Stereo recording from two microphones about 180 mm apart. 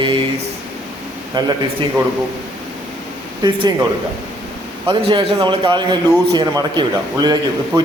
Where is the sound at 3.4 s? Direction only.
25° right (ahead or behind).